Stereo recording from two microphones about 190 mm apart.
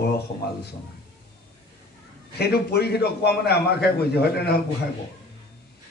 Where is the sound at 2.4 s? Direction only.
60° left (ahead or behind).